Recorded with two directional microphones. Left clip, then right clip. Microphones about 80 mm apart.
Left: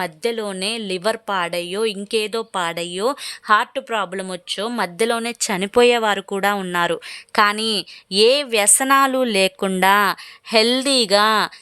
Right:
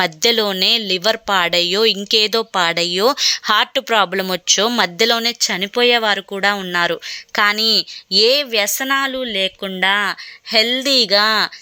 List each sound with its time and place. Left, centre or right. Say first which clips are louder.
0.0 s speech: right 7 dB; centre
0.5 s speech: right 9 dB; centre
0.8 s speech: right 5 dB; centre
2.3 s speech: right 6 dB; centre
2.6 s speech: right 7 dB; centre
4.9 s speech: right 2 dB; centre
5.3 s speech: right 1 dB; left
8.9 s speech: left 3 dB; left